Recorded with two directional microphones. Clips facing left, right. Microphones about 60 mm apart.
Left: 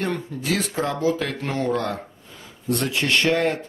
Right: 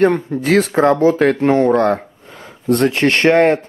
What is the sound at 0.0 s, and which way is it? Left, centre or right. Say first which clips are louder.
Speech: right 12 dB; right.